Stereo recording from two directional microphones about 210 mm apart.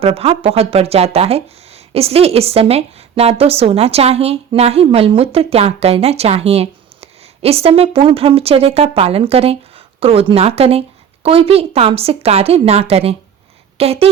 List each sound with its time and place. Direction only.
0.0 s a woman's voice: 25° right (ahead or behind)